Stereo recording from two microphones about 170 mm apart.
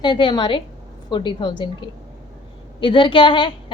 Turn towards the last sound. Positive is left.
turn(degrees=30)  # may be behind; listen again after turning